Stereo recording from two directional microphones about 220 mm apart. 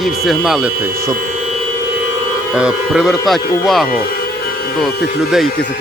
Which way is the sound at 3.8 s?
40° left (ahead or behind).